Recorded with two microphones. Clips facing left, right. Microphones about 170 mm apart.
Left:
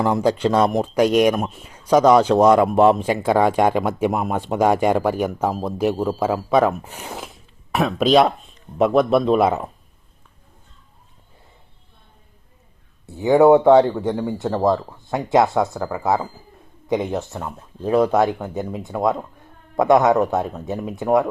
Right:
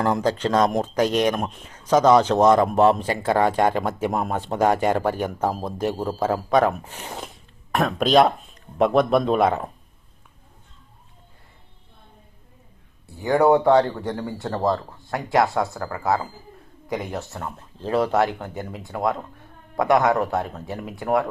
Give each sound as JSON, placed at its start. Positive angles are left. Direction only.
{"t": 0.0, "sound": "speech", "side_deg": 10}
{"t": 6.8, "sound": "speech", "side_deg": 10}
{"t": 13.1, "sound": "speech", "side_deg": 20}